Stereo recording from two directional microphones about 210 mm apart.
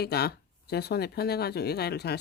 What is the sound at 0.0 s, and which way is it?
Speech, 50° left (ahead or behind).